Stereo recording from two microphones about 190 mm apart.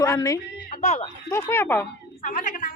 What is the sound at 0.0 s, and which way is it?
Speech, 15° left (ahead or behind).